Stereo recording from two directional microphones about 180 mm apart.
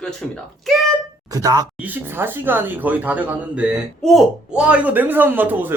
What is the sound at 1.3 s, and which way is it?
Speech, 20° right (ahead or behind).